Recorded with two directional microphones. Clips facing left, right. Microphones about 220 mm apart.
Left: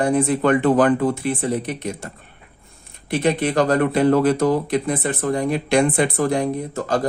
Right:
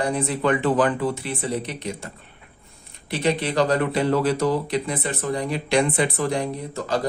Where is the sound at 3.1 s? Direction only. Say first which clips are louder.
Left 4 dB; 50° left (ahead or behind).